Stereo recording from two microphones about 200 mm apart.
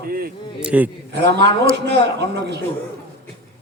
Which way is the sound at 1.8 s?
55° right (ahead or behind).